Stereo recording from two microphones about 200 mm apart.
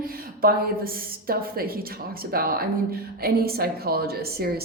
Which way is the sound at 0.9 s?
45° right (ahead or behind).